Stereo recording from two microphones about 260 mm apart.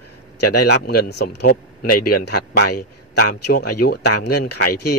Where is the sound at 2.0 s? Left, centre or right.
Left.